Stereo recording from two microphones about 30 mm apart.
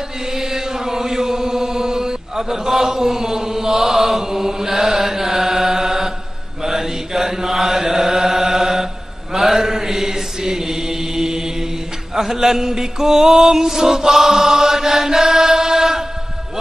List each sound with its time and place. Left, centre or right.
0.3 s chant: centre
6.6 s mantra: centre
12.2 s music: centre